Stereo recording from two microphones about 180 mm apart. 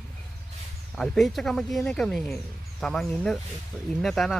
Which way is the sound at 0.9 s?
Centre (ahead or behind).